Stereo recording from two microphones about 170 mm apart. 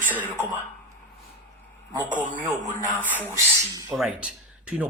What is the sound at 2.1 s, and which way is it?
Speech, 50° right (ahead or behind).